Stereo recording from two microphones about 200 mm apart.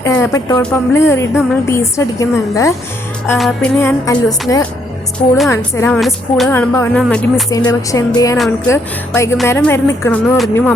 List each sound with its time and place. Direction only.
0.0 s a woman's voice: 15° left (ahead or behind)
3.3 s speech: centre (ahead or behind)
3.8 s a woman's voice: 10° left (ahead or behind)
5.9 s speech: centre (ahead or behind)
6.5 s a woman's voice: 10° left (ahead or behind)
7.5 s a woman's voice: 15° left (ahead or behind)